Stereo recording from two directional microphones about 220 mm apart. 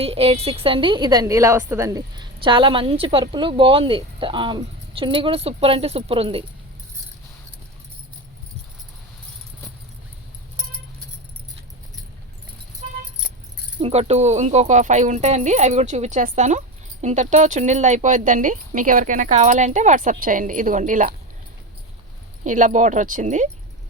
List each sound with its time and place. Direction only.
0.0 s a woman's voice: 25° right (ahead or behind)
13.8 s speech: 30° right (ahead or behind)
22.4 s speech: 35° right (ahead or behind)